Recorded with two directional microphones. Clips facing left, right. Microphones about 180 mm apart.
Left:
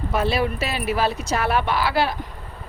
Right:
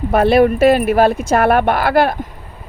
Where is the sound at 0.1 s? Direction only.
55° right (ahead or behind).